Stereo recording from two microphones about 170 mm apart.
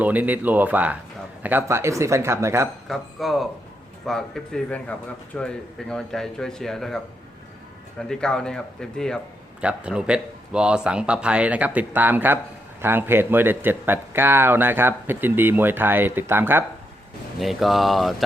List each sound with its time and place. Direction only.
0.0 s a man's voice: 10° right (ahead or behind)
2.8 s a man's voice: centre (ahead or behind)
9.6 s a man's voice: 5° right (ahead or behind)
17.4 s a man's voice: centre (ahead or behind)